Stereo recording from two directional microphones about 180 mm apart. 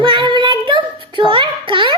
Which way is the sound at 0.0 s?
25° right (ahead or behind).